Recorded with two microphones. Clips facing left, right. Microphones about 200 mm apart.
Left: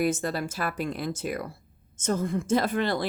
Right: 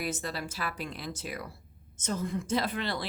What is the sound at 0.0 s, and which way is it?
A woman's voice, 50° left (ahead or behind).